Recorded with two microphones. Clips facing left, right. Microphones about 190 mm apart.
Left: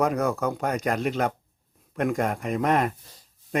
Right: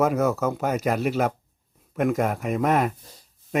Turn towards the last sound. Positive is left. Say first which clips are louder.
# right 2 dB
turn(degrees=0)  # may be behind; listen again after turning